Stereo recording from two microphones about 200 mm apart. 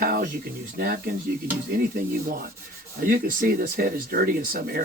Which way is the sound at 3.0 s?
45° right (ahead or behind).